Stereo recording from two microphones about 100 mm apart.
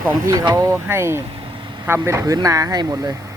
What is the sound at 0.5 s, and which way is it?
Speech, 30° right (ahead or behind).